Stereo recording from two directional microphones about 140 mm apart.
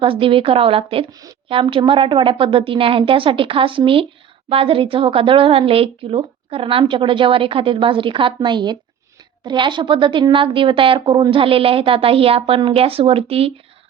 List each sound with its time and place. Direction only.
0.0 s a woman's voice: 40° right (ahead or behind)